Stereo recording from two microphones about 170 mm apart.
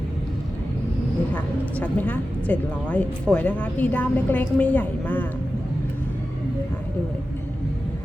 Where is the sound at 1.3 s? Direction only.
10° left (ahead or behind).